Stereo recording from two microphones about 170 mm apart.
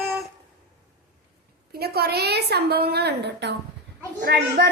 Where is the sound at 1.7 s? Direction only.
70° right (ahead or behind); by 3.5 s 85° right.